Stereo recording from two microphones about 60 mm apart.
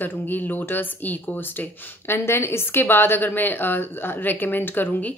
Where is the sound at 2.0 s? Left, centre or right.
Left.